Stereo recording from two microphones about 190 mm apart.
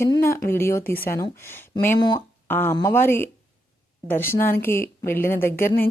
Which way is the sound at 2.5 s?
10° left (ahead or behind).